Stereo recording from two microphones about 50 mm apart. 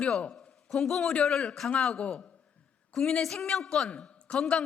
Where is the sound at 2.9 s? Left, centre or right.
Centre.